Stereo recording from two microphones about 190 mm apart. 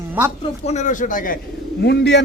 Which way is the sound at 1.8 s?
60° left (ahead or behind).